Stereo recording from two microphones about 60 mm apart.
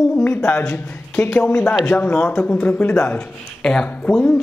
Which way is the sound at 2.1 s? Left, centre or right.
Centre.